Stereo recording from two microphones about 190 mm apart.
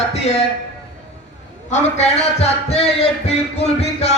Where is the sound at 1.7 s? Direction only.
35° left (ahead or behind).